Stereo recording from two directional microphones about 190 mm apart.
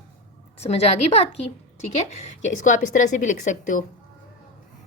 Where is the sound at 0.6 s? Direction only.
35° left (ahead or behind).